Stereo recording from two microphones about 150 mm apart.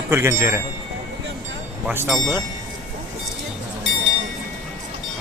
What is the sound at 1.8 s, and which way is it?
Mantra, 15° right (ahead or behind).